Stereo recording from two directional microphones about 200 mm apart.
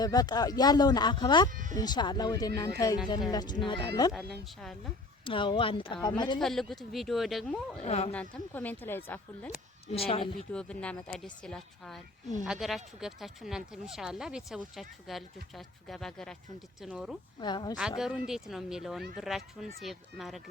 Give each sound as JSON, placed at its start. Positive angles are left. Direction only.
{"t": 0.0, "sound": "speech", "side_deg": 20}
{"t": 1.5, "sound": "speech", "side_deg": -40}
{"t": 1.7, "sound": "speech", "side_deg": 20}
{"t": 5.2, "sound": "speech", "side_deg": 25}
{"t": 6.4, "sound": "speech", "side_deg": 0}
{"t": 7.9, "sound": "speech", "side_deg": 30}
{"t": 8.1, "sound": "speech", "side_deg": 5}
{"t": 9.9, "sound": "speech", "side_deg": 30}
{"t": 10.5, "sound": "speech", "side_deg": 5}
{"t": 17.4, "sound": "speech", "side_deg": 20}
{"t": 17.7, "sound": "speech", "side_deg": -5}